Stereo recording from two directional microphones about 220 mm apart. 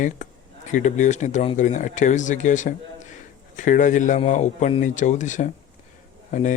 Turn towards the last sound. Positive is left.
turn(degrees=35)  # may be behind; listen again after turning